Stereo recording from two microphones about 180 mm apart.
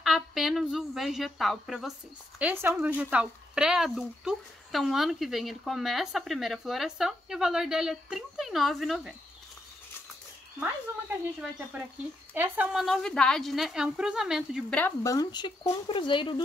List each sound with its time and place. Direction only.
0.0 s a woman's voice: centre (ahead or behind)
12.4 s speech: 10° right (ahead or behind)
12.8 s a woman's voice: 5° left (ahead or behind)
14.8 s speech: 10° left (ahead or behind)
15.1 s speech: 25° left (ahead or behind)